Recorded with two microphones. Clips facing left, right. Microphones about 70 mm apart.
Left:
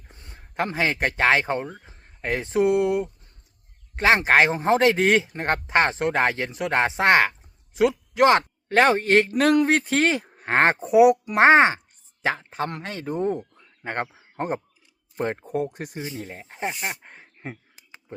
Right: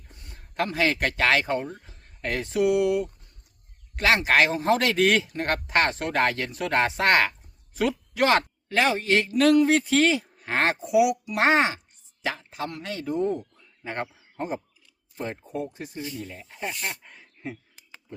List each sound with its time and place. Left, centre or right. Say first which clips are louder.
0.1 s a man's voice: left 2 dB; left
8.7 s a man's voice: left 5 dB; left
16.0 s a man's voice: even; left
16.7 s a man's voice: left 2 dB; left
17.0 s a sound: even; left